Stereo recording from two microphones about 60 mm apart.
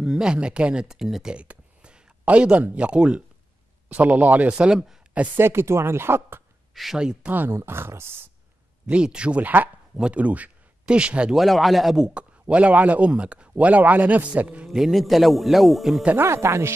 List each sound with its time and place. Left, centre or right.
0.0 s speech: centre
1.3 s a man's voice: centre
4.7 s speech: centre
5.1 s speech: right
5.4 s speech: right
6.7 s a sound: centre
7.2 s speech: right
7.5 s speech: right
8.8 s speech: centre
11.3 s a man's voice: centre; by 14.7 s right
14.7 s a man's voice: centre
16.2 s speech: right